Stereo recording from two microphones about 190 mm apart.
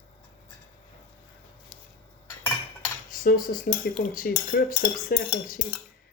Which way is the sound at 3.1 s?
45° left (ahead or behind).